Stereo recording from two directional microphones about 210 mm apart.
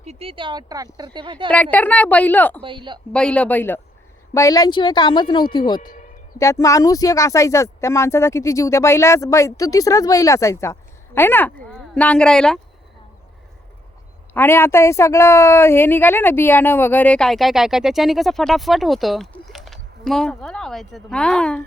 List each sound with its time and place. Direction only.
0.0 s speech: 30° right (ahead or behind)
1.7 s speech: 5° left (ahead or behind)
2.6 s speech: 25° right (ahead or behind)
3.1 s a woman's voice: 5° left (ahead or behind); by 5.8 s 20° left (ahead or behind)
5.8 s speech: 40° left (ahead or behind)
6.4 s speech: 15° left (ahead or behind)
14.3 s a woman's voice: 10° left (ahead or behind)